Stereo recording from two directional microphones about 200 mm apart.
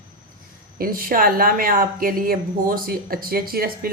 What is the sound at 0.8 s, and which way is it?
Speech, 45° right (ahead or behind).